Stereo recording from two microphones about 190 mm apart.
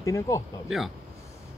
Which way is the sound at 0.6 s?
Centre (ahead or behind).